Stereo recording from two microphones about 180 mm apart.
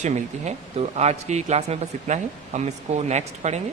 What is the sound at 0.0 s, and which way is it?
A man's voice, 40° right (ahead or behind).